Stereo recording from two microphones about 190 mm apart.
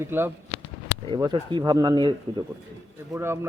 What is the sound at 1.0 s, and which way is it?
Speech, 25° right (ahead or behind).